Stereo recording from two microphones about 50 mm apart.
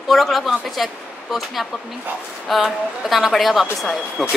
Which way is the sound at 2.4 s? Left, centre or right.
Centre.